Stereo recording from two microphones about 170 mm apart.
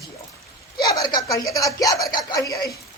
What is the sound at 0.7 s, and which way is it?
A woman's voice, 25° left (ahead or behind).